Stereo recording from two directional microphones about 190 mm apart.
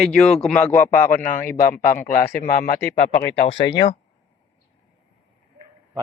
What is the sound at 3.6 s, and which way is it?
Speech, 25° left (ahead or behind).